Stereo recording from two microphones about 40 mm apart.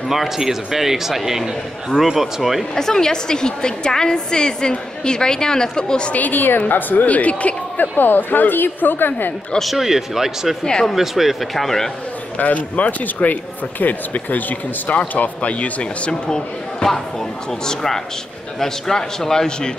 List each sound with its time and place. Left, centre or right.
0.1 s speech: centre
2.7 s a woman's voice: centre
6.1 s a woman's voice: left
9.6 s speech: centre
10.6 s a woman's voice: centre
11.0 s speech: centre
11.5 s a woman's voice: centre
12.4 s speech: left
16.1 s a woman's voice: centre